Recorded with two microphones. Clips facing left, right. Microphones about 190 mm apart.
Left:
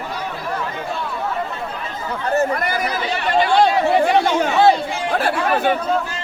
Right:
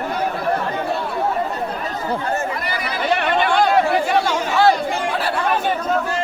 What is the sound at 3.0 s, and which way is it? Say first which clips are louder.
Chatter: right 3 dB; 60° right (ahead or behind).